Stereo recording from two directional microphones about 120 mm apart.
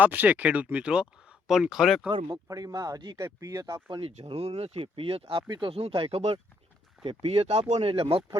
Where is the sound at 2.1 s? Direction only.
35° right (ahead or behind).